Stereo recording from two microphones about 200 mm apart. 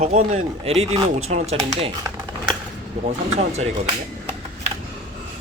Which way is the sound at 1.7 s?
20° right (ahead or behind).